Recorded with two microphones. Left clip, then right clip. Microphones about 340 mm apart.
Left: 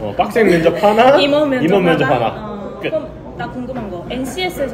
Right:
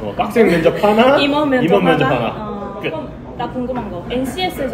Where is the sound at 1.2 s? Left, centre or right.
Centre.